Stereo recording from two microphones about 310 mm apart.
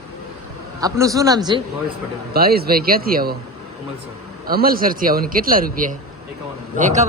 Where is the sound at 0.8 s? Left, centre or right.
Centre.